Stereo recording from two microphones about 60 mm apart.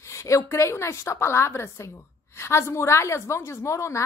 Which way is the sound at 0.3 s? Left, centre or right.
Left.